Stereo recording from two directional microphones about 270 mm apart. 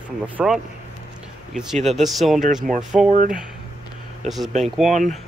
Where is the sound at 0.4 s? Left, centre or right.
Centre.